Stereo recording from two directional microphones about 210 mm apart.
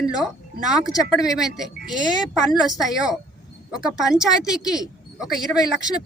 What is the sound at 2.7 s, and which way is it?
Speech, 5° right (ahead or behind).